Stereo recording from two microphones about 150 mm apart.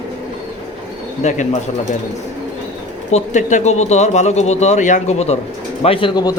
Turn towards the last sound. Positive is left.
turn(degrees=30)  # may be behind; listen again after turning